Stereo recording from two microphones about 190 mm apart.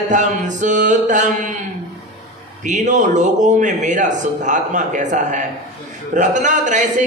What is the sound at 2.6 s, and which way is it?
Speech, 40° right (ahead or behind).